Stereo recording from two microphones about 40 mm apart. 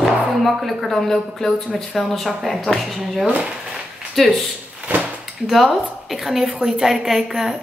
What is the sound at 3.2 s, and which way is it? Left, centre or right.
Speech, right.